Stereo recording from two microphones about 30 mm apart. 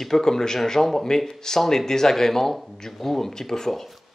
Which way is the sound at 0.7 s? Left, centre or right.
Centre.